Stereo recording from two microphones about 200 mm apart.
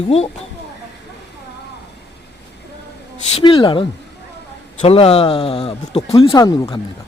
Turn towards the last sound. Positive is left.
turn(degrees=20)  # may be behind; listen again after turning